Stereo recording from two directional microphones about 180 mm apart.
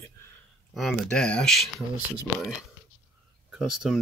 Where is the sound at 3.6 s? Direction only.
Centre (ahead or behind).